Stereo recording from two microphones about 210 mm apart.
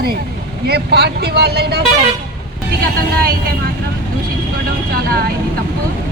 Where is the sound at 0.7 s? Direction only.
50° right (ahead or behind).